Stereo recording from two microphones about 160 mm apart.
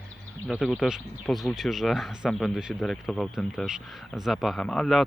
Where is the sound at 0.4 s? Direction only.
Centre (ahead or behind).